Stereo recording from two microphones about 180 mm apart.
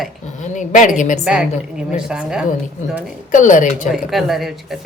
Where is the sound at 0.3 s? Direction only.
45° left (ahead or behind).